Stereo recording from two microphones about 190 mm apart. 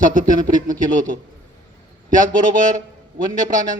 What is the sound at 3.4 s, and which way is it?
Speech, 45° right (ahead or behind).